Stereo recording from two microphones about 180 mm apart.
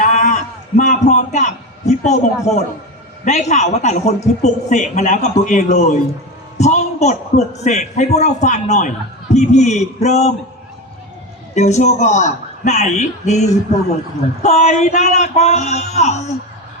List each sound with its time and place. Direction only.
0.0 s a sound: 40° left (ahead or behind)
3.2 s a woman's voice: 40° left (ahead or behind)
11.5 s a woman's voice: 40° left (ahead or behind)
14.4 s a woman's voice: 40° left (ahead or behind)